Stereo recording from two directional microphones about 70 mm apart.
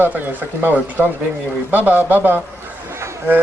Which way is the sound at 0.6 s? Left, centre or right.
Right.